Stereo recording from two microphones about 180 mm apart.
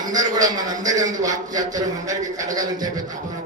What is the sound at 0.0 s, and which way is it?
A man's voice, 20° right (ahead or behind).